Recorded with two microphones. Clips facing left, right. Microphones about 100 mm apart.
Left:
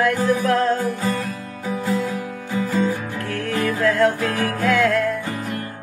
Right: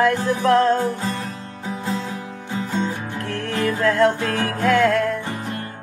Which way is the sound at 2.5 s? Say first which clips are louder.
Left 3 dB; 25° right (ahead or behind).